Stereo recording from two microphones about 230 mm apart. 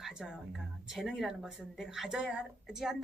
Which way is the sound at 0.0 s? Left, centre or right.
Centre.